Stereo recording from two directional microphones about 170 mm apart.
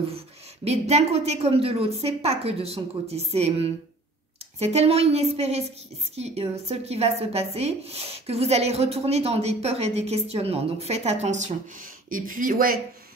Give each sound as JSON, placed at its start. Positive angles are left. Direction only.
{"t": 0.7, "sound": "speech", "side_deg": -40}